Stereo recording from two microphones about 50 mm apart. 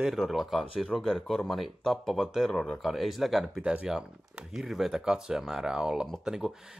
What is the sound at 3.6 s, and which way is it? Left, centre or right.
Speech, right.